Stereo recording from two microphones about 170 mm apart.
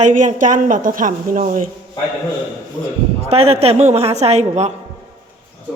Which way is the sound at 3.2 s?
35° right (ahead or behind).